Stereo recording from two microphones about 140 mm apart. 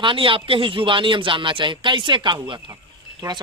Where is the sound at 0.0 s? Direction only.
40° right (ahead or behind).